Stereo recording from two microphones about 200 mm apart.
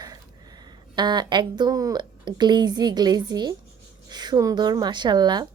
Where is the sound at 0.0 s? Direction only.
20° right (ahead or behind).